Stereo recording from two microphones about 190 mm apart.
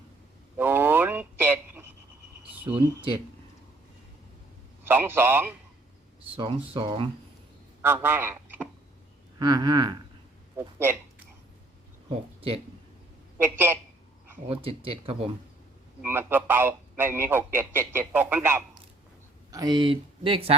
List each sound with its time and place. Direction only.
0.5 s a sound: 10° right (ahead or behind)
2.4 s cricket: 10° right (ahead or behind)
4.8 s a man's voice: 10° right (ahead or behind)
6.3 s speech: 25° right (ahead or behind)
7.8 s a man's voice: 10° right (ahead or behind)
9.4 s speech: 20° right (ahead or behind)
10.6 s a man's voice: 10° right (ahead or behind)
13.4 s a man's voice: 10° right (ahead or behind)
14.4 s speech: 30° right (ahead or behind)
16.0 s a man's voice: 10° right (ahead or behind); by 20.6 s 30° right (ahead or behind)